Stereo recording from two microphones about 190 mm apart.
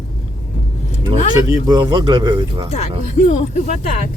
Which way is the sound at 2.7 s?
35° left (ahead or behind).